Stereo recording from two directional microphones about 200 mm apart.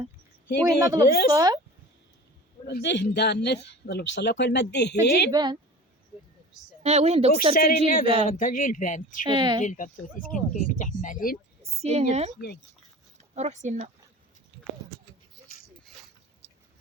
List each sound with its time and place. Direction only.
0.6 s speech: 15° right (ahead or behind)
1.0 s speech: 50° left (ahead or behind)
1.3 s speech: 20° right (ahead or behind)
2.6 s speech: 60° left (ahead or behind)
5.3 s speech: 20° right (ahead or behind)
6.8 s speech: 30° right (ahead or behind)
7.9 s speech: 45° left (ahead or behind)
9.2 s speech: 25° right (ahead or behind)
9.6 s speech: 40° left (ahead or behind)
11.8 s speech: 30° right (ahead or behind)
13.3 s speech: 35° right (ahead or behind)